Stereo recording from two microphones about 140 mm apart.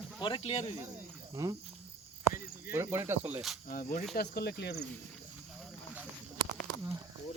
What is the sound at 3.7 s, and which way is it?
Speech, 90° left.